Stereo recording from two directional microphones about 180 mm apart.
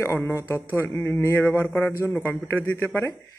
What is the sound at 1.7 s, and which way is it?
Speech, centre (ahead or behind).